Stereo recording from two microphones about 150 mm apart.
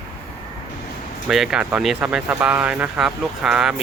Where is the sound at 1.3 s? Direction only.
5° right (ahead or behind).